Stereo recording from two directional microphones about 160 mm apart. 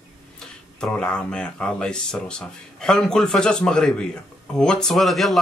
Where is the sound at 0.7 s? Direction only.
5° left (ahead or behind).